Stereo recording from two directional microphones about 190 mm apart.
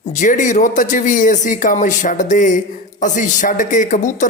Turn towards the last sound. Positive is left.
turn(degrees=40)  # may be behind; listen again after turning